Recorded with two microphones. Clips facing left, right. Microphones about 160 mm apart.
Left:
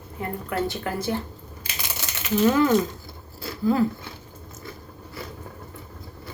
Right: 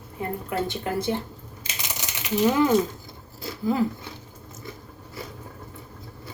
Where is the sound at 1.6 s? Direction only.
15° right (ahead or behind).